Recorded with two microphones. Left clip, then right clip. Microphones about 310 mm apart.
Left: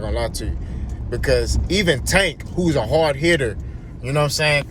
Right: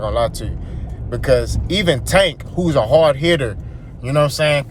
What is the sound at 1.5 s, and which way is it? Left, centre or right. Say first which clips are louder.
Speech: right 2 dB; centre.